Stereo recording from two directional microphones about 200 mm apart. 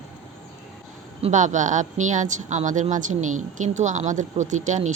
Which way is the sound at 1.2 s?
35° right (ahead or behind).